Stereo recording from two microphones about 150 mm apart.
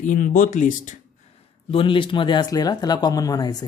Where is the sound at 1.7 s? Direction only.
35° left (ahead or behind).